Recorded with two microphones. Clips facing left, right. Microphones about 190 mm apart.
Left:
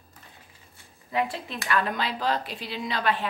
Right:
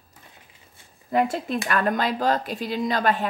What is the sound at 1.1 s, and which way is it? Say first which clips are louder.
Speech: right 6 dB; 45° right (ahead or behind).